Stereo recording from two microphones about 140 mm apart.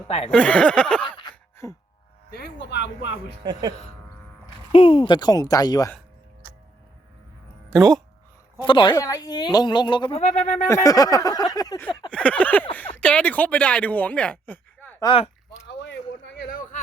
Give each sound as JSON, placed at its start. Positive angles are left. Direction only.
{"t": 0.3, "sound": "speech", "side_deg": 10}
{"t": 1.6, "sound": "speech", "side_deg": 20}
{"t": 3.4, "sound": "speech", "side_deg": -30}
{"t": 4.7, "sound": "speech", "side_deg": 40}
{"t": 8.6, "sound": "speech", "side_deg": 35}
{"t": 10.2, "sound": "speech", "side_deg": 60}
{"t": 10.7, "sound": "speech", "side_deg": 25}
{"t": 11.5, "sound": "a sound", "side_deg": 25}
{"t": 12.1, "sound": "a sound", "side_deg": 10}
{"t": 12.7, "sound": "speech", "side_deg": 15}
{"t": 15.0, "sound": "speech", "side_deg": 40}
{"t": 16.5, "sound": "a sound", "side_deg": 75}